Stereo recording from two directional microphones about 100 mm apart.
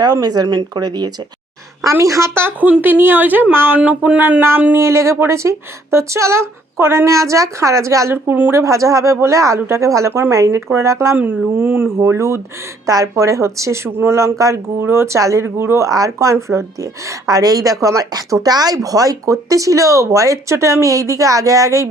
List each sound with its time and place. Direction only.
0.0 s speech: 40° right (ahead or behind)
1.8 s speech: 30° right (ahead or behind)
8.6 s speech: 30° right (ahead or behind)
11.9 s speech: 30° right (ahead or behind)
17.2 s speech: 40° right (ahead or behind)